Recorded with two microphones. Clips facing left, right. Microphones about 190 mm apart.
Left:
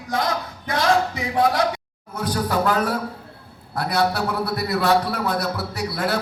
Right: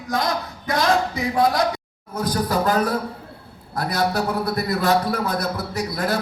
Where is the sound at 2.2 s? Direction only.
40° right (ahead or behind).